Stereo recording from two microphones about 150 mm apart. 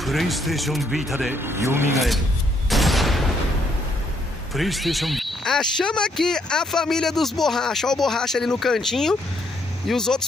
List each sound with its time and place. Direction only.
0.0 s speech: centre (ahead or behind)
1.3 s speech: 15° right (ahead or behind)
2.7 s fusillade: centre (ahead or behind)
4.6 s speech: centre (ahead or behind)